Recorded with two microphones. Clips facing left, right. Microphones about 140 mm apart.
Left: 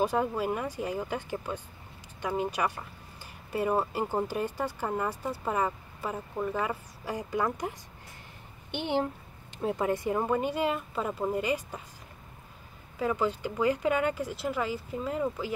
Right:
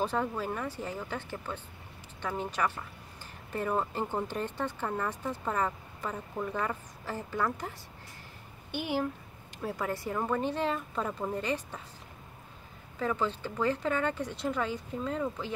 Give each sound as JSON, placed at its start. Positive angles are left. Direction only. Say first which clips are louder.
{"t": 0.0, "sound": "speech", "louder": "left 4 dB", "side_deg": 10}
{"t": 8.7, "sound": "a woman's voice", "louder": "left 2 dB", "side_deg": 25}
{"t": 13.0, "sound": "speech", "louder": "left 3 dB", "side_deg": 10}